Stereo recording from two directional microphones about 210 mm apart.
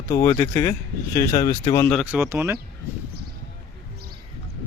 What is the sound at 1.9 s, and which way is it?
Speech, 5° right (ahead or behind).